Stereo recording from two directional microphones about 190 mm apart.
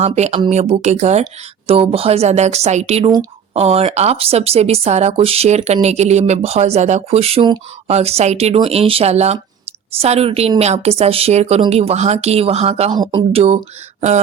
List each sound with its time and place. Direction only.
0.0 s speech: 35° right (ahead or behind)